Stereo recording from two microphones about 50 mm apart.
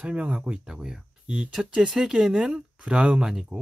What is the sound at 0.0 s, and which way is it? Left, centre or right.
Speech, right.